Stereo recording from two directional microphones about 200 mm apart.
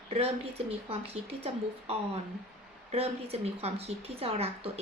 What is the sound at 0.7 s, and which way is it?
A woman's voice, 30° right (ahead or behind).